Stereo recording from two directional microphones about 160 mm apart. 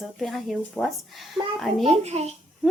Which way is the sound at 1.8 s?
40° right (ahead or behind).